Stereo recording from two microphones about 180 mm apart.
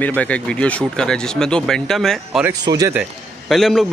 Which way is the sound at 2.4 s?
20° right (ahead or behind).